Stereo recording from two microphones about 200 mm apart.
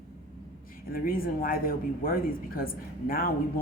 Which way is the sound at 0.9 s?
45° left (ahead or behind).